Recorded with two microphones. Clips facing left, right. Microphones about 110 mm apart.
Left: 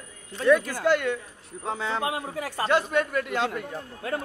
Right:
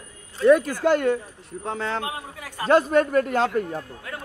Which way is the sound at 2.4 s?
30° left (ahead or behind).